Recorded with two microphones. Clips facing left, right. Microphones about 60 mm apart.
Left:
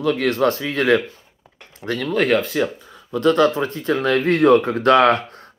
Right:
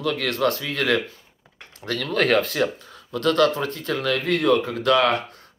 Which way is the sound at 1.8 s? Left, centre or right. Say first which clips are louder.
Left 3 dB; centre.